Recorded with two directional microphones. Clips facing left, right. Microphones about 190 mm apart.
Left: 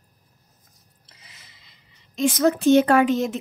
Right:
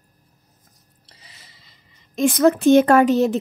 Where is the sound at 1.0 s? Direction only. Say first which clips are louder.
Right 3 dB; 35° right (ahead or behind).